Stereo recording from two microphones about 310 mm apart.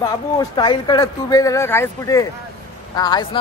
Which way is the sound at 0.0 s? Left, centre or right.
Centre.